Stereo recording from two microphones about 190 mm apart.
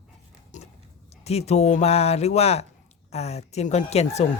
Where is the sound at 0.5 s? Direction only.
40° left (ahead or behind).